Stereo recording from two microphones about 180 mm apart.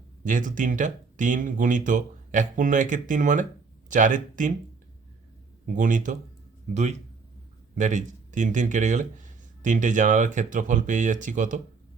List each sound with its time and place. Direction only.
0.3 s speech: 45° right (ahead or behind)
5.6 s speech: 45° right (ahead or behind)